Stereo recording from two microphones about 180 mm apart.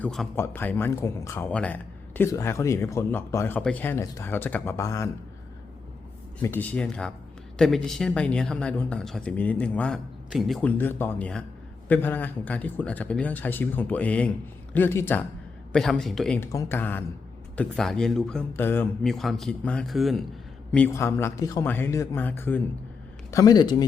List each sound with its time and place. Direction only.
0.0 s a man's voice: centre (ahead or behind); by 5.1 s 15° left (ahead or behind)
6.4 s a man's voice: 10° left (ahead or behind)
19.0 s speech: centre (ahead or behind)
20.7 s a man's voice: 10° left (ahead or behind)